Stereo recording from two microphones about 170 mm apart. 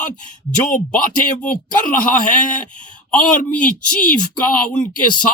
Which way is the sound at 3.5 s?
10° left (ahead or behind).